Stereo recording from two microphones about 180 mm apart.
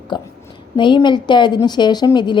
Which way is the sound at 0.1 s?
25° left (ahead or behind).